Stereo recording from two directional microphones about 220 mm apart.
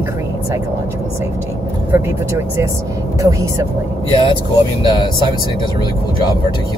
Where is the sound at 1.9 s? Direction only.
10° right (ahead or behind).